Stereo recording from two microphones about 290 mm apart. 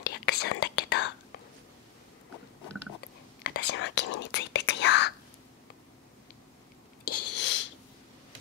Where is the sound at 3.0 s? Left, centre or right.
Left.